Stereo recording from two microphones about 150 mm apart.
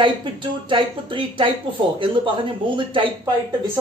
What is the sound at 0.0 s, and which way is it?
Speech, 35° right (ahead or behind).